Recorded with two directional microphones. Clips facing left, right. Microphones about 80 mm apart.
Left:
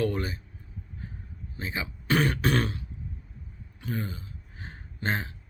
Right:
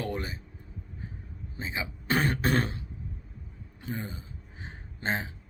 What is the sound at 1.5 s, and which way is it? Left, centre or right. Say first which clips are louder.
Speech: left 1 dB; centre.